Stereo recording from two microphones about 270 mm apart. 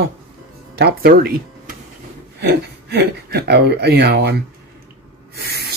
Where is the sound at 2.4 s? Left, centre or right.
Right.